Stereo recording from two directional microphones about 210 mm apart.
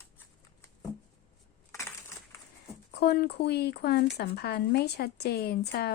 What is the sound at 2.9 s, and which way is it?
Speech, 50° left (ahead or behind).